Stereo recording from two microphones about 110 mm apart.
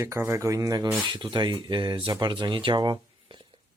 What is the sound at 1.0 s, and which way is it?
Speech, 45° right (ahead or behind).